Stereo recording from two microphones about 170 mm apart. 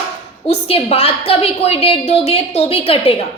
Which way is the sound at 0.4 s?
35° left (ahead or behind).